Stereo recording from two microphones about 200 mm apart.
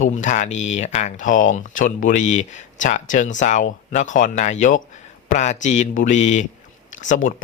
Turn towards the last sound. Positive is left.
turn(degrees=40)  # may be behind; listen again after turning